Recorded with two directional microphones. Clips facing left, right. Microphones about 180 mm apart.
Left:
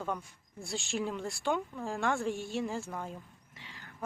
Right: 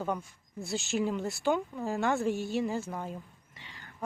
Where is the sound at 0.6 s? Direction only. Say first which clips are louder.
Right 4 dB; centre (ahead or behind).